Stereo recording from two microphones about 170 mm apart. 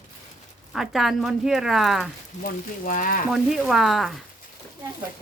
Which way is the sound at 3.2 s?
Centre (ahead or behind).